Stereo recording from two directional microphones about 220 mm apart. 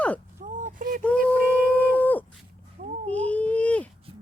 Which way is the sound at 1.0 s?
5° left (ahead or behind).